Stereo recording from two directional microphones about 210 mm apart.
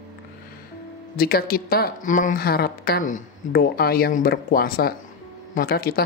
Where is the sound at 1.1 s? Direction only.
45° left (ahead or behind).